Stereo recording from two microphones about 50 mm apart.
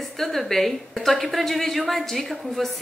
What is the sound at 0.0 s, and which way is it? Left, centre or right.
A woman's voice, centre.